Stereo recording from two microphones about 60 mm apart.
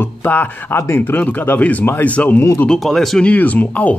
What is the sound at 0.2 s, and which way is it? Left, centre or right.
Speech, left.